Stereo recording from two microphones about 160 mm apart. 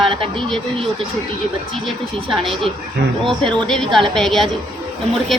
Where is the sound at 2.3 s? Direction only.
35° right (ahead or behind).